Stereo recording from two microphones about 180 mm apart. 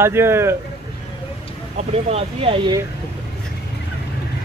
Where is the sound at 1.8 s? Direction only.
35° right (ahead or behind).